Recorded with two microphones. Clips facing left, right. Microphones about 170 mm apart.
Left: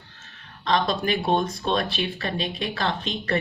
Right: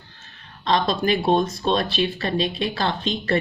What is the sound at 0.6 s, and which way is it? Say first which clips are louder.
Speech: right 2 dB; 30° right (ahead or behind).